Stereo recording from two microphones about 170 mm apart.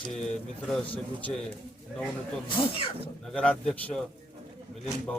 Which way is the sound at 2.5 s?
30° left (ahead or behind).